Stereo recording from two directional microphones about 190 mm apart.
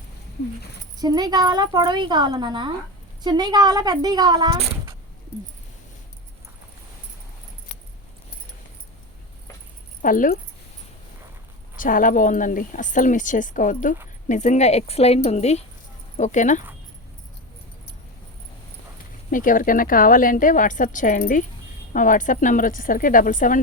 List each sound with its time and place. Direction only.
0.9 s a woman's voice: 20° right (ahead or behind)
10.0 s a woman's voice: 45° left (ahead or behind)
11.8 s a woman's voice: 45° left (ahead or behind)
19.3 s a woman's voice: 45° left (ahead or behind)